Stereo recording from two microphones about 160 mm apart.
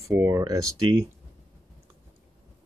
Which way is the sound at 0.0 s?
20° right (ahead or behind).